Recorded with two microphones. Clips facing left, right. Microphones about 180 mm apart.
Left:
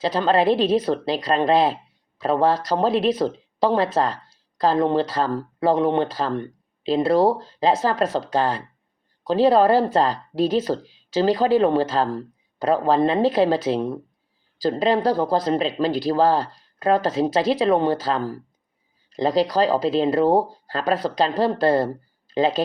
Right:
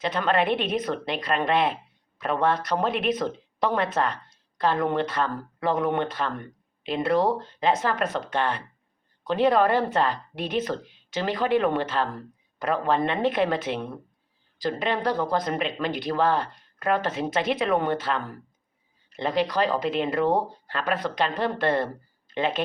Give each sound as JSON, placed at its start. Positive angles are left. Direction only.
{"t": 0.0, "sound": "a woman's voice", "side_deg": 30}